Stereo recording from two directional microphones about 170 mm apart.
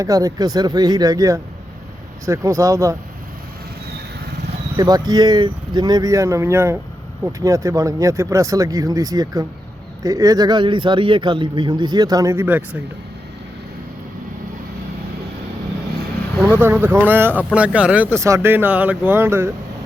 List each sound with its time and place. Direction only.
0.0 s speech: 20° right (ahead or behind)
4.8 s speech: 20° right (ahead or behind)
16.4 s speech: 15° right (ahead or behind)